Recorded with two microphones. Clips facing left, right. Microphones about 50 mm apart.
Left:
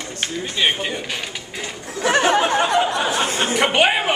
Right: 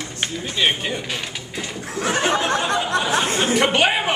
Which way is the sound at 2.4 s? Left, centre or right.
Left.